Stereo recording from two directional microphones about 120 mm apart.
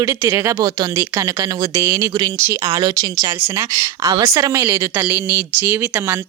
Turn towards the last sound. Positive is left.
turn(degrees=-20)  # may be behind; listen again after turning